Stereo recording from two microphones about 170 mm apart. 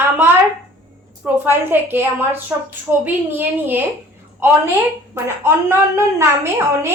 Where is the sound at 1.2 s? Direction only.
10° right (ahead or behind).